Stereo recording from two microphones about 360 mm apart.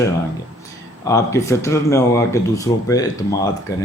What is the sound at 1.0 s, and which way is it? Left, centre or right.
Speech, centre.